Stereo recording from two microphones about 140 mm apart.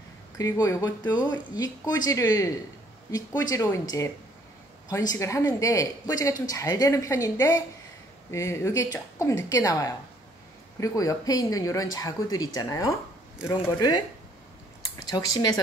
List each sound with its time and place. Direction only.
0.4 s speech: 25° left (ahead or behind)
4.8 s speech: 25° left (ahead or behind)
15.0 s speech: 30° left (ahead or behind)